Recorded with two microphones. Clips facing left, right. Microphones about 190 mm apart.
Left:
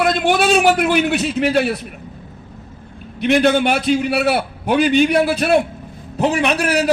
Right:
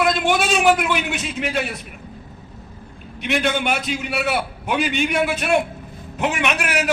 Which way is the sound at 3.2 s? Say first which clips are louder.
Left 7 dB; 35° left (ahead or behind).